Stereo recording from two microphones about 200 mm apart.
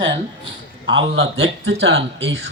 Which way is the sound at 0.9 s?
75° right (ahead or behind).